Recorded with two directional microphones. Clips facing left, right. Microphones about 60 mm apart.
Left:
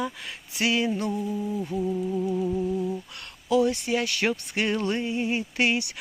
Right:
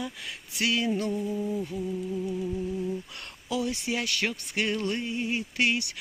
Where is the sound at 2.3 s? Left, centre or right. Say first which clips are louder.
Left 5 dB; left.